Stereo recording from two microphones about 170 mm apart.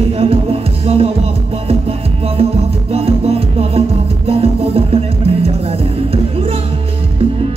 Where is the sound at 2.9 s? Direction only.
35° right (ahead or behind).